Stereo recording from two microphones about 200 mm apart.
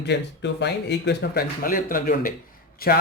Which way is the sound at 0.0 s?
60° left (ahead or behind).